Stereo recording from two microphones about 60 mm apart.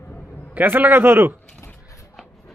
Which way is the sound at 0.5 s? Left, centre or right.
Right.